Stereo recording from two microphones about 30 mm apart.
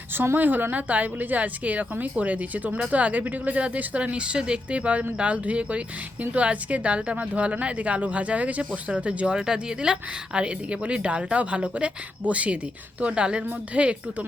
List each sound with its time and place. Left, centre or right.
0.3 s a woman's voice: right
0.7 s a woman's voice: right
3.8 s speech: right
4.7 s a woman's voice: right
9.2 s a woman's voice: right